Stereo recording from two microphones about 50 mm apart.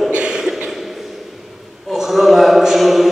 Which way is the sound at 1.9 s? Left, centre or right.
Centre.